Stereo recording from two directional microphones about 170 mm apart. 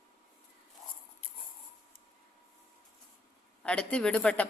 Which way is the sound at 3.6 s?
5° left (ahead or behind).